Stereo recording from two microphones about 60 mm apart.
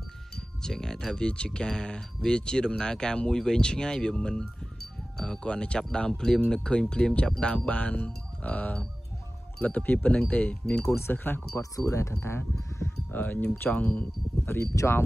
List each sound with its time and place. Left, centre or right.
0.6 s speech: centre
11.0 s speech: left
11.7 s speech: left
12.5 s speech: left
13.1 s speech: left
14.8 s speech: centre